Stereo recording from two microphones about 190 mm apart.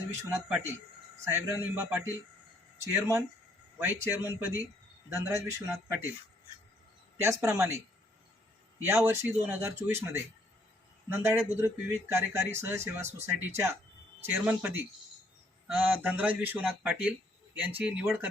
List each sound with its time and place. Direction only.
0.3 s speech: 10° right (ahead or behind)
7.2 s speech: 15° right (ahead or behind)
8.8 s speech: 10° right (ahead or behind)